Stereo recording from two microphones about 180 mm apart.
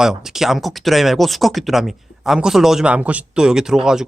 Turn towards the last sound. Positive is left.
turn(degrees=-5)  # may be behind; listen again after turning